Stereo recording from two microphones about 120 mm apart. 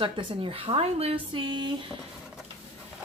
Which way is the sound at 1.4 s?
40° right (ahead or behind).